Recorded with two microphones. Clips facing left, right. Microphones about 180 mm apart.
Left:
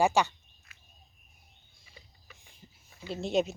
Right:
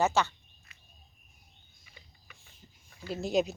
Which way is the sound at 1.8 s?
30° left (ahead or behind).